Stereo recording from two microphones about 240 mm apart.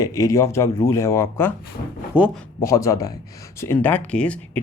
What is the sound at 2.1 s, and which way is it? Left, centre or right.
Speech, centre.